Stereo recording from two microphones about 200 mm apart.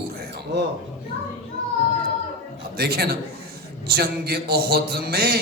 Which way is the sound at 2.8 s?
50° right (ahead or behind).